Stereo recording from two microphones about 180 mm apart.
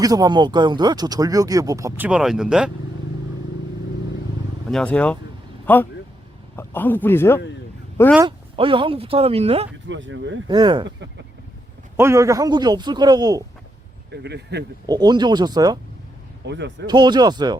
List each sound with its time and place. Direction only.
0.0 s speech: 20° right (ahead or behind)
2.0 s speech: 5° right (ahead or behind)
4.7 s speech: 5° left (ahead or behind)
8.5 s speech: 30° right (ahead or behind)
9.9 s speech: 90° right
10.5 s speech: 25° right (ahead or behind)
11.9 s speech: 15° right (ahead or behind)
14.1 s speech: 70° right (ahead or behind)
14.8 s speech: 20° right (ahead or behind)
16.5 s speech: 75° right (ahead or behind)
16.8 s speech: 25° right (ahead or behind)